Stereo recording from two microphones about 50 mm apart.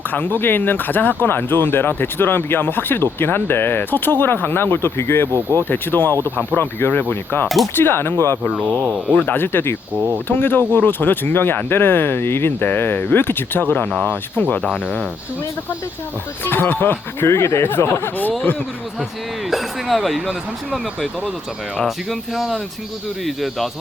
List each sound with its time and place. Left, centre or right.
0.1 s speech: left
5.3 s speech: right
5.6 s speech: left
7.4 s speech: centre
7.8 s speech: left
8.7 s speech: right
9.1 s speech: left
9.9 s speech: right
10.2 s speech: left
16.4 s speech: left
17.2 s speech: left
18.2 s speech: left
19.5 s speech: centre
21.8 s speech: centre